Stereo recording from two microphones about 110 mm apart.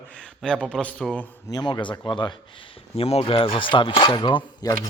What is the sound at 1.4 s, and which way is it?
A man's voice, 35° left (ahead or behind).